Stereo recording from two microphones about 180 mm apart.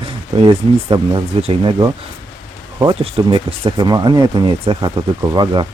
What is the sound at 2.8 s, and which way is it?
Speech, 30° right (ahead or behind).